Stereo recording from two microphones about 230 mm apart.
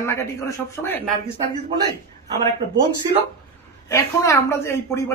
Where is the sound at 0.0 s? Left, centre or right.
Centre.